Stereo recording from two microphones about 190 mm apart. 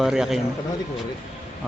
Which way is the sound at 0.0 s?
Centre (ahead or behind).